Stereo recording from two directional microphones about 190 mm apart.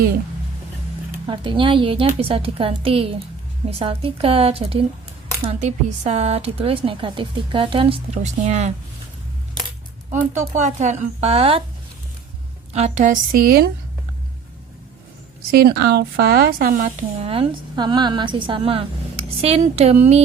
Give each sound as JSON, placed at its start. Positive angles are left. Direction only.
{"t": 1.3, "sound": "a woman's voice", "side_deg": -25}
{"t": 10.3, "sound": "speech", "side_deg": -40}
{"t": 12.7, "sound": "a woman's voice", "side_deg": -35}
{"t": 15.5, "sound": "speech", "side_deg": -55}
{"t": 17.2, "sound": "a woman's voice", "side_deg": -30}